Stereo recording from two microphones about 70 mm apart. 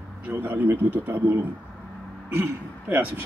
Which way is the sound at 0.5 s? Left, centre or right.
Right.